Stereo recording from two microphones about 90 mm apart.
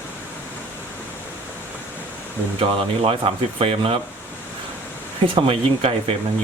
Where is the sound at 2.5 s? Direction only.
90° right.